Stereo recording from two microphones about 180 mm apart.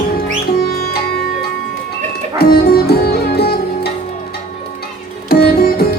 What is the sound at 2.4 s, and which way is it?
Music, 60° left (ahead or behind).